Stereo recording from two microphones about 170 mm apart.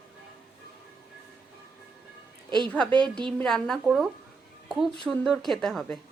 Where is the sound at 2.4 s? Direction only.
25° right (ahead or behind).